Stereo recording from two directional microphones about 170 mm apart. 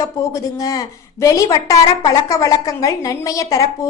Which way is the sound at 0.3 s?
20° left (ahead or behind).